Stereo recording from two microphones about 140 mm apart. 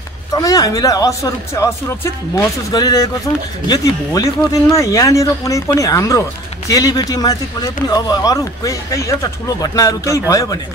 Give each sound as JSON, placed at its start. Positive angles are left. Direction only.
{"t": 0.3, "sound": "speech", "side_deg": 25}